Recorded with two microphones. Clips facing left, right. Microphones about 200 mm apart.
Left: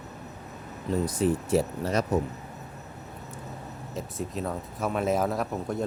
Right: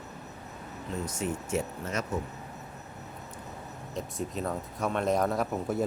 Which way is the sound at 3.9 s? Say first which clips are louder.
Left 1 dB; centre (ahead or behind).